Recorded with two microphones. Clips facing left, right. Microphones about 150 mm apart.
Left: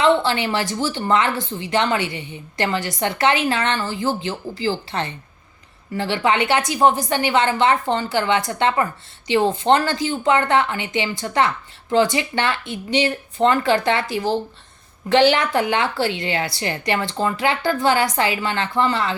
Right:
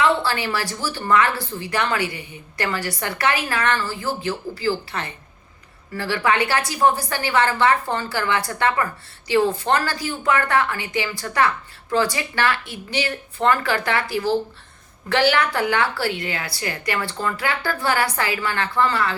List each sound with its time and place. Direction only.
0.0 s a woman's voice: 20° left (ahead or behind)